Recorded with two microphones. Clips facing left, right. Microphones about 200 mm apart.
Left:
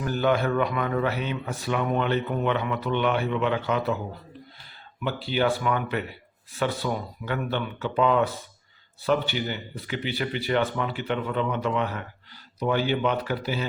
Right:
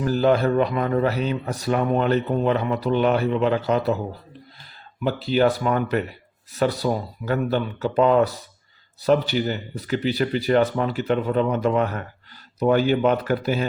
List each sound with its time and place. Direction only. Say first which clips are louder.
0.0 s speech: right 5 dB; 35° right (ahead or behind)
5.0 s speech: right 5 dB; 40° right (ahead or behind)